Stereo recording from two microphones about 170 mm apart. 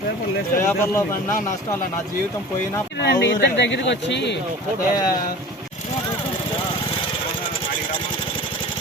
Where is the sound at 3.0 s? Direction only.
85° left.